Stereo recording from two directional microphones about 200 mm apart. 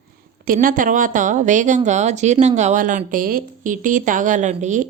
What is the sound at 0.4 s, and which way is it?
Speech, 45° right (ahead or behind).